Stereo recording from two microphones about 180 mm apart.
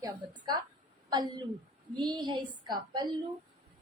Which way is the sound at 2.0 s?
25° right (ahead or behind).